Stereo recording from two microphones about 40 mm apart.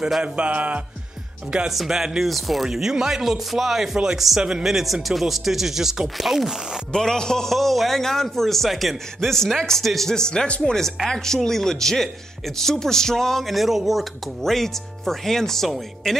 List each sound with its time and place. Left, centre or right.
0.2 s a sound: right
1.7 s a man's voice: centre
6.9 s a man's voice: centre
7.4 s a man's voice: centre; by 10.6 s left
10.6 s a man's voice: centre
14.4 s a man's voice: centre